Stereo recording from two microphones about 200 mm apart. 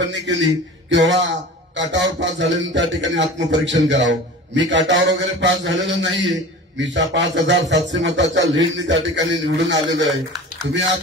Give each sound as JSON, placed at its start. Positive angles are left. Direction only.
{"t": 0.0, "sound": "a man's voice", "side_deg": -65}